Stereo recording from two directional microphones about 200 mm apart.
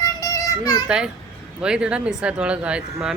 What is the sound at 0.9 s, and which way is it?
Speech, 5° right (ahead or behind).